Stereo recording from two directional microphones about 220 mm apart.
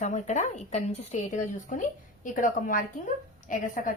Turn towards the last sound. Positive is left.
turn(degrees=40)  # may be behind; listen again after turning